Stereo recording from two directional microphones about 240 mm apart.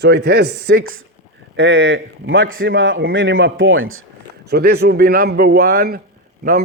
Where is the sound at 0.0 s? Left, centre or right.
Right.